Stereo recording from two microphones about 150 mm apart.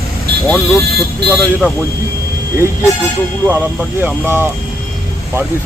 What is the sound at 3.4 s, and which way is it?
Speech, 10° right (ahead or behind).